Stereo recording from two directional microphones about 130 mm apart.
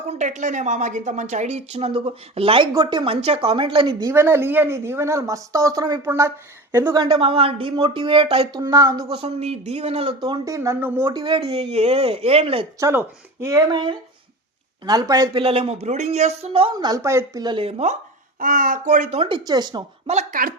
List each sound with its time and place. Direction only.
0.1 s speech: 65° right (ahead or behind); by 2.6 s 45° right (ahead or behind)
2.7 s speech: 35° right (ahead or behind)
4.0 s speech: 20° right (ahead or behind)
6.9 s speech: 40° right (ahead or behind)
8.5 s speech: 30° right (ahead or behind)
9.1 s speech: 50° right (ahead or behind)
10.2 s speech: 30° right (ahead or behind); by 11.1 s 15° right (ahead or behind)
11.1 s speech: 40° right (ahead or behind)
12.8 s speech: 20° right (ahead or behind); by 16.7 s 45° right (ahead or behind)
16.7 s speech: 30° right (ahead or behind)
17.4 s speech: 40° right (ahead or behind)
18.3 s speech: 90° right; by 19.2 s 70° right (ahead or behind)
19.2 s speech: 35° right (ahead or behind)
20.1 s speech: 75° right (ahead or behind)